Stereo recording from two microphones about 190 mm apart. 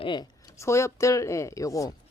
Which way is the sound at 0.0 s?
25° left (ahead or behind).